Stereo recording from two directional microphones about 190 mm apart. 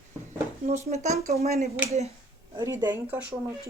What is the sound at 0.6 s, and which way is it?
Speech, 35° right (ahead or behind).